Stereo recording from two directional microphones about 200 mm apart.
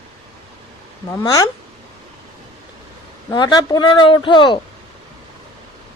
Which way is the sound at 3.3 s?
20° left (ahead or behind).